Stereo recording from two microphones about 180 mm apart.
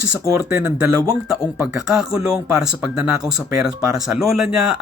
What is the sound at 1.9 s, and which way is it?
Speech, 5° right (ahead or behind).